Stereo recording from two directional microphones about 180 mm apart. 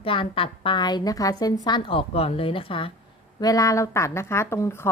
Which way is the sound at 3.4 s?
20° left (ahead or behind).